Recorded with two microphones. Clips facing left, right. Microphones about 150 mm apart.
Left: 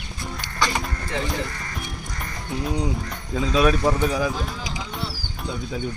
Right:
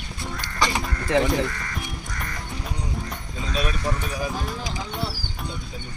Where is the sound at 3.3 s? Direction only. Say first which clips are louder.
Left 9 dB; 90° left.